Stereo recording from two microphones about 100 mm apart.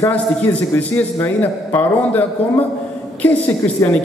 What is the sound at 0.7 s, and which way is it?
A man's voice, 20° left (ahead or behind).